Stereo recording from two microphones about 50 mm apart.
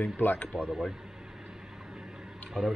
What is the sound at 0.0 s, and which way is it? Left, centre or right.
Speech, left.